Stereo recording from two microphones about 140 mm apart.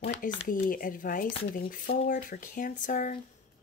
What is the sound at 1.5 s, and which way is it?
Speech, 90° left.